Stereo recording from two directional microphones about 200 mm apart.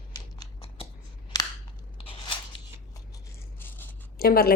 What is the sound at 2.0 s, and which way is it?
Biting, 25° left (ahead or behind).